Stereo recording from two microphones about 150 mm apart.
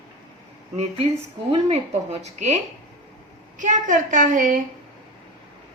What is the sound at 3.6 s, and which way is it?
Speech, 60° right (ahead or behind).